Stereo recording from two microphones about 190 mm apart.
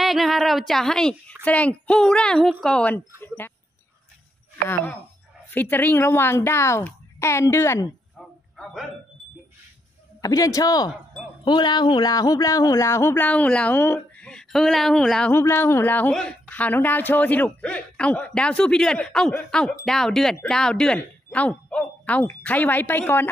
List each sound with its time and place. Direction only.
0.0 s a sound: centre (ahead or behind)
1.4 s speech: 5° left (ahead or behind)
5.5 s speech: 10° left (ahead or behind)
8.5 s speech: 5° left (ahead or behind)
10.2 s speech: 20° left (ahead or behind)